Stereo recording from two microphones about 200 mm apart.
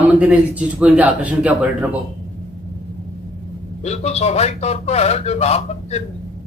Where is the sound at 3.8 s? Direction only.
35° left (ahead or behind).